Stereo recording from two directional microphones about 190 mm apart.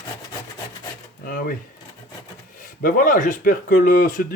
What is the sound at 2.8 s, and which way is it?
Speech, 45° left (ahead or behind).